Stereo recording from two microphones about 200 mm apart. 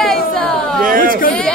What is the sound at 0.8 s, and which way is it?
Speech, 45° right (ahead or behind).